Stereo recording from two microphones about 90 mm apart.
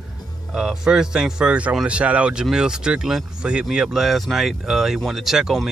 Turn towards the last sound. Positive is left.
turn(degrees=-5)  # may be behind; listen again after turning